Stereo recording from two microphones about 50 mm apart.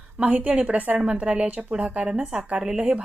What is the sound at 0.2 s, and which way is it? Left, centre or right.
Speech, right.